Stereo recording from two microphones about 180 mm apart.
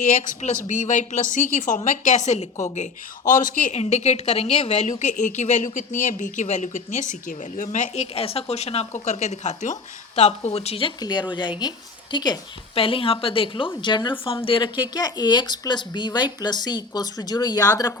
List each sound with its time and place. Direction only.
0.0 s speech: 45° left (ahead or behind); by 18.0 s 20° left (ahead or behind)